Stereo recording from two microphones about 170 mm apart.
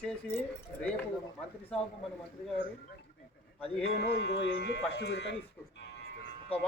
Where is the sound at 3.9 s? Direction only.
70° left (ahead or behind); by 5.4 s 90° left.